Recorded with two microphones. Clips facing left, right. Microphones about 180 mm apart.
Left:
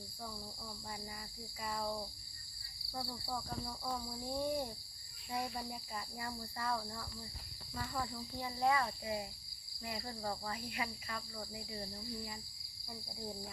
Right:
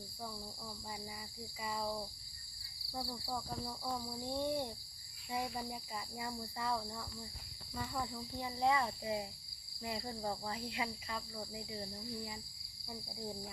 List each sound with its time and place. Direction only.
1.6 s cricket: 5° right (ahead or behind)
8.4 s speech: 15° right (ahead or behind)
11.3 s cricket: 15° right (ahead or behind)